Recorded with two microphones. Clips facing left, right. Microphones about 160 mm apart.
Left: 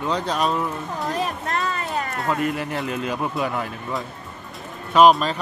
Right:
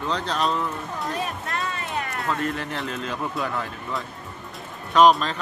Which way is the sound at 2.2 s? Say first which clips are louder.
Left 4 dB; 10° left (ahead or behind).